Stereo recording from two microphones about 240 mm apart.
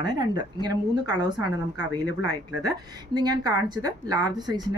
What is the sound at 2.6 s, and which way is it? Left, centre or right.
Speech, centre.